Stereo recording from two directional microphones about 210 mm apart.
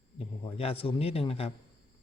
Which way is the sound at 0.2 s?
25° left (ahead or behind).